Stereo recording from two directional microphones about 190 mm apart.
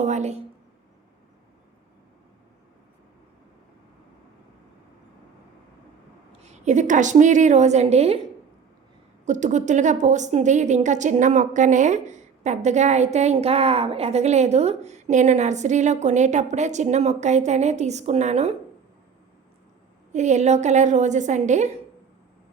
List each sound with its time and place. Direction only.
0.0 s a woman's voice: 35° right (ahead or behind)
6.4 s a woman's voice: 35° right (ahead or behind)
9.2 s a woman's voice: 40° right (ahead or behind)
20.1 s a woman's voice: 40° right (ahead or behind)